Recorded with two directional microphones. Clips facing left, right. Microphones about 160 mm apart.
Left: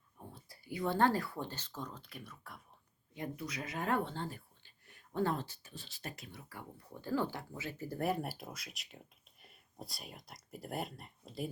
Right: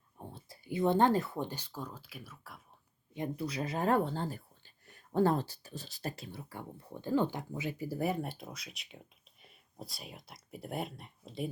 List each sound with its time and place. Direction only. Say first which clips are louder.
0.2 s speech: right 4 dB; 25° right (ahead or behind); by 2.6 s 5° right (ahead or behind)
3.2 s speech: right 6 dB; 30° right (ahead or behind); by 11.4 s centre (ahead or behind)